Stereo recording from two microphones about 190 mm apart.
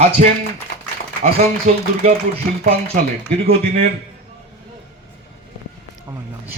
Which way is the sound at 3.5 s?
30° right (ahead or behind).